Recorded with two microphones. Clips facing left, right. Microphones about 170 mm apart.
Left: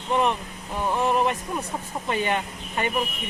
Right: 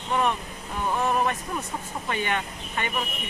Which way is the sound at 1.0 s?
20° left (ahead or behind).